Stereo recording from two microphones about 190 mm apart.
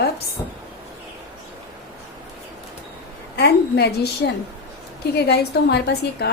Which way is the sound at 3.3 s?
60° left (ahead or behind).